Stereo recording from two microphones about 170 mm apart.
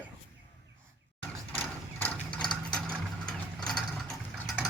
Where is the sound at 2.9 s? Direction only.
5° left (ahead or behind).